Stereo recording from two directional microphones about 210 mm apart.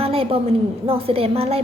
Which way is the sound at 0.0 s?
25° right (ahead or behind).